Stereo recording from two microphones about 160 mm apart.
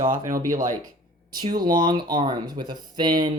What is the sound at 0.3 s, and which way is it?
Speech, 60° right (ahead or behind).